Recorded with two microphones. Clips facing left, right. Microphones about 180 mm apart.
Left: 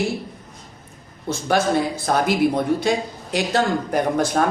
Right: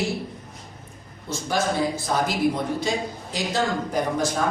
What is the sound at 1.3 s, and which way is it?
Speech, 60° left (ahead or behind).